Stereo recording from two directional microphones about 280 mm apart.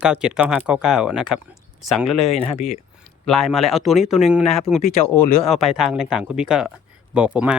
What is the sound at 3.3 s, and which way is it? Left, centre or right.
Speech, centre.